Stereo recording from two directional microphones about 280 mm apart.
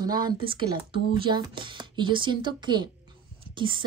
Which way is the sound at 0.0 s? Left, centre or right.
Centre.